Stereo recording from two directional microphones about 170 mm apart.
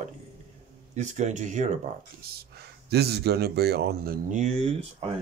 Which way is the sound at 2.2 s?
65° right (ahead or behind).